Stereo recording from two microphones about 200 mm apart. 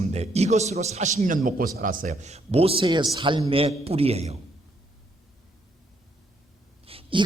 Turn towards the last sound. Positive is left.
turn(degrees=-25)  # may be behind; listen again after turning